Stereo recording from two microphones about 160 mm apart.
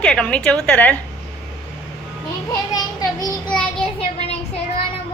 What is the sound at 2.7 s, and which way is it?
Child singing, 25° left (ahead or behind).